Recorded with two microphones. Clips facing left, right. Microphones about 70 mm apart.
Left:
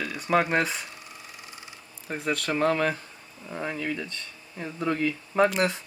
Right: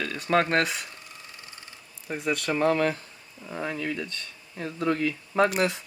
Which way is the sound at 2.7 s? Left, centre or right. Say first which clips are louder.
Right 1 dB; centre.